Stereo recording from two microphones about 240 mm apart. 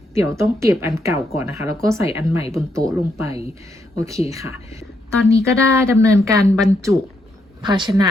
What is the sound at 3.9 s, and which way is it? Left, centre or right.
A woman's voice, centre.